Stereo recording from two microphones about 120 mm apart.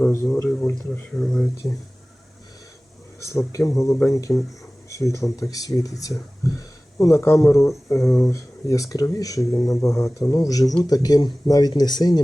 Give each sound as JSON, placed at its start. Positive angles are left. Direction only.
{"t": 0.3, "sound": "speech", "side_deg": 5}
{"t": 3.2, "sound": "speech", "side_deg": 25}